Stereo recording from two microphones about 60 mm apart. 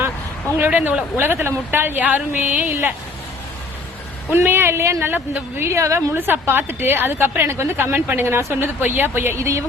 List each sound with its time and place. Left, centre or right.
0.5 s speech: right
1.1 s a woman's voice: right
2.0 s speech: right
4.3 s a woman's voice: right
5.6 s a woman's voice: right
6.1 s a woman's voice: right
7.9 s speech: right
8.2 s speech: right
8.8 s a woman's voice: right
9.4 s speech: right